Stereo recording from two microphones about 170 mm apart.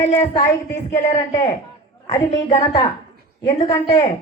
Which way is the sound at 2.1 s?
40° left (ahead or behind).